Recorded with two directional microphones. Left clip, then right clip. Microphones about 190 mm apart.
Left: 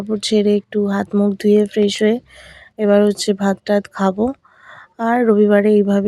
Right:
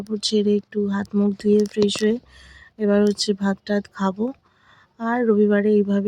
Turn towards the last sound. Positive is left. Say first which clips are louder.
# left 5 dB
turn(degrees=20)  # may be behind; listen again after turning